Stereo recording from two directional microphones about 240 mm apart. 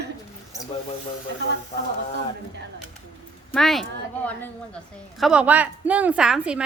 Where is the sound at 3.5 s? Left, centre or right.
Centre.